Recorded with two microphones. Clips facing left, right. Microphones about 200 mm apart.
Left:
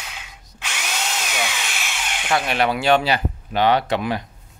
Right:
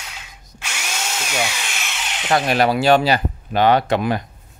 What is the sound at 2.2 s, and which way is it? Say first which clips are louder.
Speech: right 4 dB; 40° right (ahead or behind).